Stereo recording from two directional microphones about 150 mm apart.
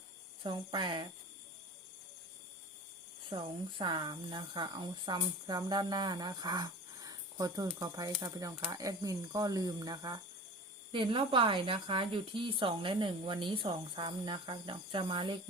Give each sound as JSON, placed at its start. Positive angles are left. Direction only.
{"t": 0.4, "sound": "speech", "side_deg": -35}
{"t": 3.2, "sound": "speech", "side_deg": -30}